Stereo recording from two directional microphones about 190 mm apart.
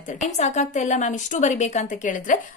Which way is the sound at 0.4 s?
35° left (ahead or behind).